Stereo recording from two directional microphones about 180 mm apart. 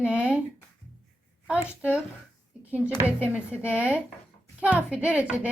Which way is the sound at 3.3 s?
5° right (ahead or behind).